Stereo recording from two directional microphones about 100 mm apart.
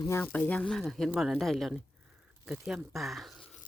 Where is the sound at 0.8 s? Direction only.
5° left (ahead or behind).